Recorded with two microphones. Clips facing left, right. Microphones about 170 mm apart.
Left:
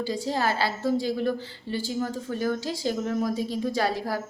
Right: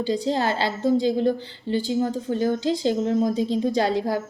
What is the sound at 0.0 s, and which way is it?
A woman's voice, 25° right (ahead or behind).